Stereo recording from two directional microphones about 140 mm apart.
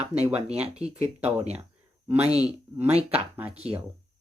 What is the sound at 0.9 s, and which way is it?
Speech, 50° right (ahead or behind).